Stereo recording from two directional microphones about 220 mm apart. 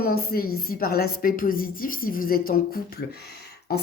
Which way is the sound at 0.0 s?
45° left (ahead or behind).